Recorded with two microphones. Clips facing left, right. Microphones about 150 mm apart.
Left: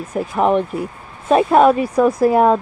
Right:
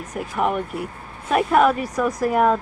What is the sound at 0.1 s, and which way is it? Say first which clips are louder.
Speech: left 7 dB; 30° left (ahead or behind).